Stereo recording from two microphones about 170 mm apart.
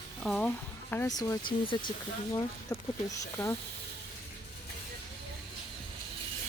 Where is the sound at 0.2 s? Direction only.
5° left (ahead or behind).